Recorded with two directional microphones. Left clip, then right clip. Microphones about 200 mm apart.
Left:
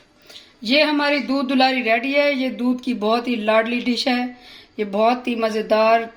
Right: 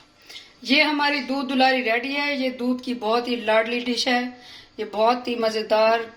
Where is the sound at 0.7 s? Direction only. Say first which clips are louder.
Left 2 dB; 50° left (ahead or behind).